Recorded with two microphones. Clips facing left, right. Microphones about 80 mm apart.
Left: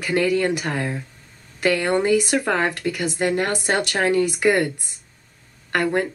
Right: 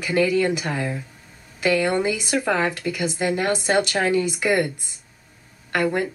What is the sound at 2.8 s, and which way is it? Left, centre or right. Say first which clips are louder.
Speech: left 1 dB; left.